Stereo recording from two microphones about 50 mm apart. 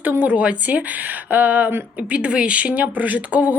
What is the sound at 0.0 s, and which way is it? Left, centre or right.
Speech, right.